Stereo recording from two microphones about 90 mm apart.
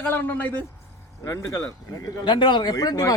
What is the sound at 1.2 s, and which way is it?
Speech, 30° left (ahead or behind).